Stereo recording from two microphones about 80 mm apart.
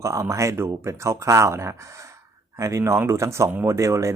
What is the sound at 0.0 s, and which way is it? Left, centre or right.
Speech, right.